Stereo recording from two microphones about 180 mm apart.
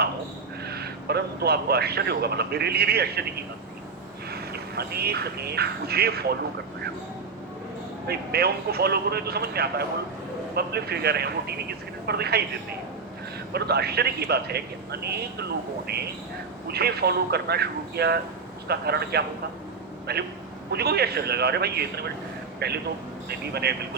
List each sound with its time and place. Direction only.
0.6 s a man's voice: 60° right (ahead or behind)
4.3 s speech: 60° right (ahead or behind)
8.0 s a man's voice: 60° right (ahead or behind)
13.5 s a man's voice: 60° right (ahead or behind)